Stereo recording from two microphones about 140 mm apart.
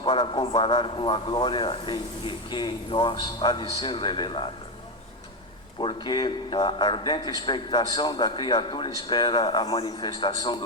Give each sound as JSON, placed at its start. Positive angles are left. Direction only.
{"t": 0.0, "sound": "a man's voice", "side_deg": 35}
{"t": 5.8, "sound": "a man's voice", "side_deg": 35}